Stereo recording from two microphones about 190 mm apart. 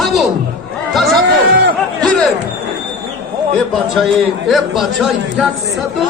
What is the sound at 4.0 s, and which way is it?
A man's voice, centre (ahead or behind).